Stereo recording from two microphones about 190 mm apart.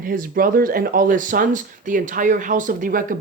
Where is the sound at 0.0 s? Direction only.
50° right (ahead or behind).